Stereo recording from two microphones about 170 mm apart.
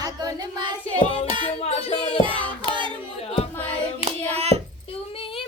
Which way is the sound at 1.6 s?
35° left (ahead or behind).